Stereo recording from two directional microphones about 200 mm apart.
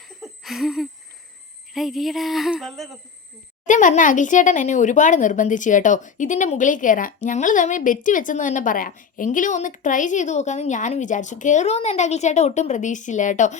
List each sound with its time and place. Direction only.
0.2 s a sound: centre (ahead or behind)
1.7 s speech: centre (ahead or behind)
3.7 s speech: 40° left (ahead or behind)